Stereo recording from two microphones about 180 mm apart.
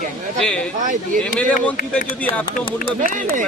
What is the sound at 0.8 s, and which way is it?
Speech, 45° right (ahead or behind).